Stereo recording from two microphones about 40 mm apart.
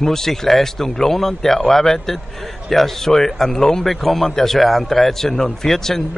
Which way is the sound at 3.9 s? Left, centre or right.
Centre.